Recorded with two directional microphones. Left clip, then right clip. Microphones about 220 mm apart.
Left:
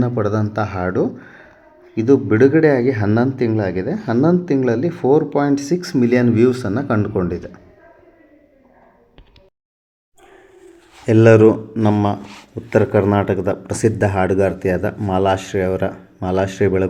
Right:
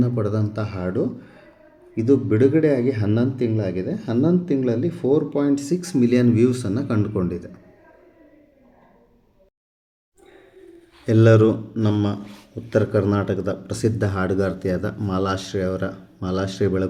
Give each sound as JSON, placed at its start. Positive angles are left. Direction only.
{"t": 0.0, "sound": "speech", "side_deg": 5}
{"t": 11.1, "sound": "speech", "side_deg": 0}
{"t": 13.7, "sound": "speech", "side_deg": 0}